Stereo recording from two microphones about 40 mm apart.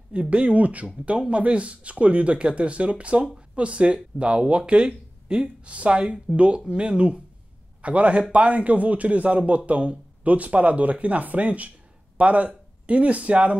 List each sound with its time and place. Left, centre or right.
0.1 s speech: right